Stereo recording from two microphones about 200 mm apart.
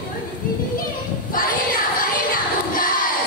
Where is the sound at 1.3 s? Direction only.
45° left (ahead or behind).